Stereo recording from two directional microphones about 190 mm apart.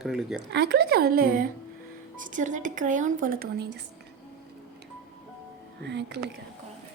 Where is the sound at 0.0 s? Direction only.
Centre (ahead or behind).